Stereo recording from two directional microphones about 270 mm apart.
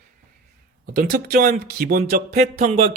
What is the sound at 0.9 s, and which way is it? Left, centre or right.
Speech, right.